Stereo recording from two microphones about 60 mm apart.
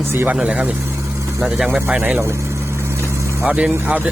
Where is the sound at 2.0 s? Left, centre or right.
Right.